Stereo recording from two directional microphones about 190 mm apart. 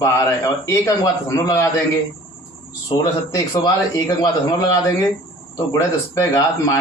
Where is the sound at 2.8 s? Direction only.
20° left (ahead or behind).